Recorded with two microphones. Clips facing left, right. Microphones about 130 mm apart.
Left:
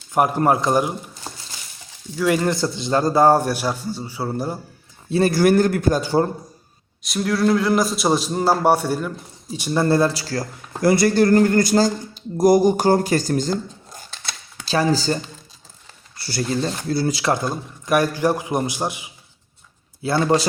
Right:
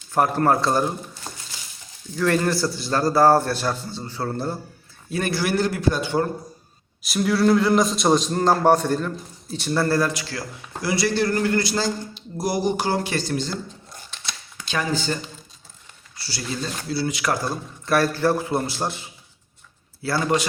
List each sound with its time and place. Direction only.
0.1 s a man's voice: 15° left (ahead or behind)
2.1 s a man's voice: 10° left (ahead or behind)
5.0 s a man's voice: 30° left (ahead or behind)
5.3 s speech: 45° left (ahead or behind)
7.0 s a man's voice: centre (ahead or behind); by 10.4 s 35° left (ahead or behind)
10.8 s speech: 50° left (ahead or behind)
14.6 s speech: 35° left (ahead or behind)
16.1 s speech: 50° left (ahead or behind)
16.6 s speech: 40° left (ahead or behind)
17.2 s a man's voice: 25° left (ahead or behind)